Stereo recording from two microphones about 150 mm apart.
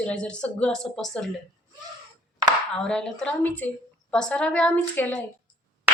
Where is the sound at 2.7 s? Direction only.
5° left (ahead or behind).